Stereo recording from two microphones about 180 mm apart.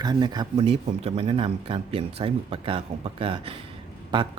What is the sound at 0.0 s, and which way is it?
Speech, 25° right (ahead or behind).